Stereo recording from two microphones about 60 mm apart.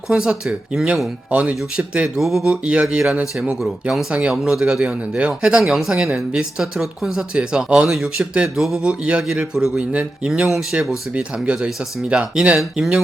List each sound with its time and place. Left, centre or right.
0.1 s speech: centre
1.3 s speech: centre
2.1 s speech: centre
2.4 s speech: centre
8.8 s speech: centre